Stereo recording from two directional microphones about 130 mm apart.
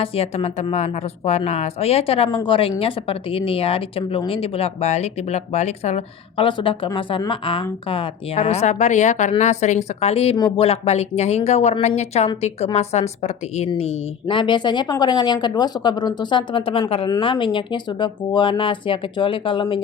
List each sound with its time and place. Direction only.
0.0 s a woman's voice: 50° left (ahead or behind)
6.3 s a woman's voice: 40° left (ahead or behind); by 14.0 s 60° left (ahead or behind)
14.3 s speech: 40° left (ahead or behind)